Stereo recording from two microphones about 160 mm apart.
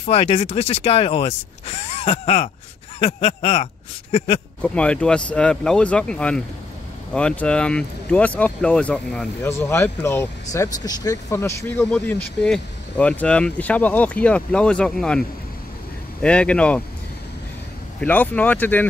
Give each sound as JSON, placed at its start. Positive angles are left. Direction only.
{"t": 0.0, "sound": "speech", "side_deg": 40}
{"t": 4.6, "sound": "speech", "side_deg": 5}
{"t": 18.0, "sound": "speech", "side_deg": 10}